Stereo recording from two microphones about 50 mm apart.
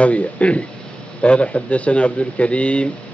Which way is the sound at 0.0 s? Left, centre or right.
Left.